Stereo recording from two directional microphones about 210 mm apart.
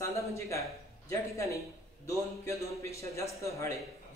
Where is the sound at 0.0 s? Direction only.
15° left (ahead or behind).